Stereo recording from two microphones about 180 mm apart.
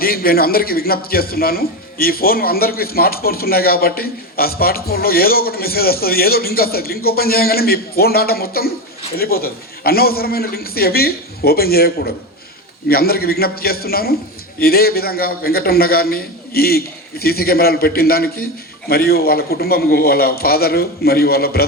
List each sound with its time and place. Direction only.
0.0 s a man's voice: 55° left (ahead or behind)